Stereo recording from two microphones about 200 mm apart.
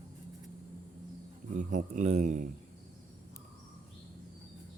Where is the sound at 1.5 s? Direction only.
35° right (ahead or behind).